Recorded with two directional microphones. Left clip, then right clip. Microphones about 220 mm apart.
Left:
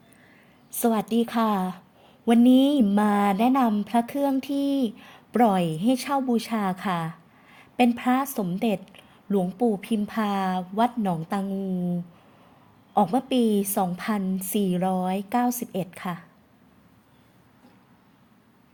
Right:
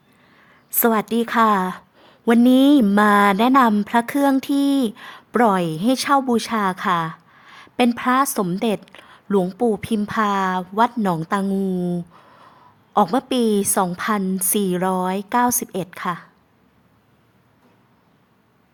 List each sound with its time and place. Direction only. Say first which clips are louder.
0.8 s a woman's voice: right 5 dB; 15° right (ahead or behind)
11.4 s speech: right 7 dB; 25° right (ahead or behind)
12.9 s speech: right 5 dB; 15° right (ahead or behind)